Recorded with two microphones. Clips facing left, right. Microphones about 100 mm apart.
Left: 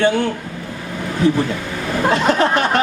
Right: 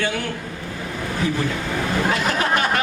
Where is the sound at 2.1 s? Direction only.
30° left (ahead or behind).